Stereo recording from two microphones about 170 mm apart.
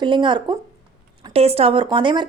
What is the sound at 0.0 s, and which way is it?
Speech, 30° right (ahead or behind).